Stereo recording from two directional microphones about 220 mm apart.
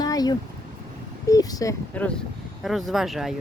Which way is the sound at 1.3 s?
15° left (ahead or behind).